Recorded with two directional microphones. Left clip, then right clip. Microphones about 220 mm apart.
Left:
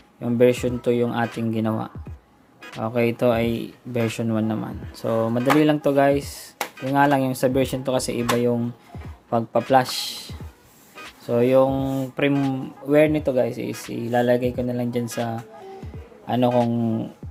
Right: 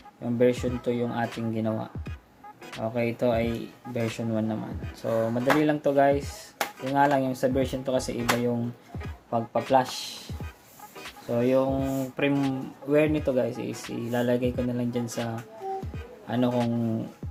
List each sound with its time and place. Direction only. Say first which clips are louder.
0.2 s speech: left 6 dB; 30° left (ahead or behind)
16.2 s speech: left 6 dB; 20° left (ahead or behind)
16.5 s speech: left 9 dB; centre (ahead or behind)